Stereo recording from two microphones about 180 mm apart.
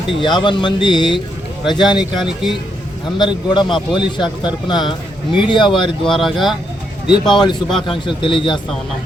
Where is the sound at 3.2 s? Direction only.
25° left (ahead or behind).